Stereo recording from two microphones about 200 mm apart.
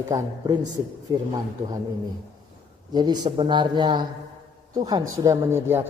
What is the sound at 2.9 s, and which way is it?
A man's voice, 20° right (ahead or behind).